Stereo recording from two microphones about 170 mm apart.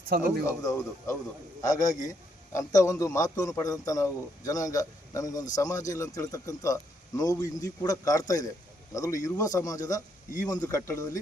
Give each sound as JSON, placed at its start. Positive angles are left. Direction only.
{"t": 0.1, "sound": "a man's voice", "side_deg": -65}
{"t": 0.4, "sound": "a man's voice", "side_deg": 20}